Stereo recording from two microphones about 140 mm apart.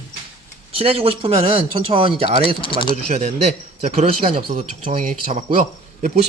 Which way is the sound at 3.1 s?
50° right (ahead or behind).